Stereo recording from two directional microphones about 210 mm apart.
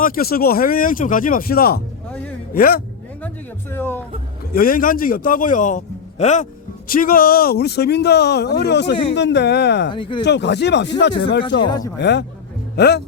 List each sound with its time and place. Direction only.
0.0 s a man's voice: 45° left (ahead or behind)
3.2 s speech: 10° left (ahead or behind)
4.5 s a man's voice: 45° left (ahead or behind)
9.9 s speech: 20° left (ahead or behind)
10.2 s a man's voice: 55° left (ahead or behind)
11.6 s speech: 20° left (ahead or behind)
11.9 s speech: 55° left (ahead or behind)